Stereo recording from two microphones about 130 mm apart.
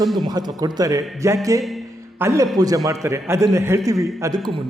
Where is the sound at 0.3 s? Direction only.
30° right (ahead or behind).